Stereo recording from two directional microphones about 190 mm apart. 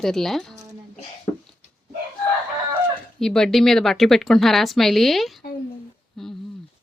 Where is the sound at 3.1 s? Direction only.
Centre (ahead or behind).